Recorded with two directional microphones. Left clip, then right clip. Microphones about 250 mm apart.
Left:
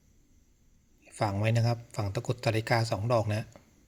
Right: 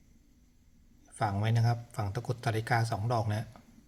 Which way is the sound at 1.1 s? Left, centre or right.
Centre.